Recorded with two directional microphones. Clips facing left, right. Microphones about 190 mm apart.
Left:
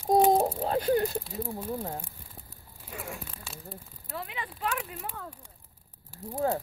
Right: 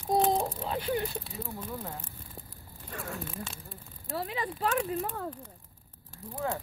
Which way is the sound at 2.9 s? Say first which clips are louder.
Right 1 dB; 10° left (ahead or behind).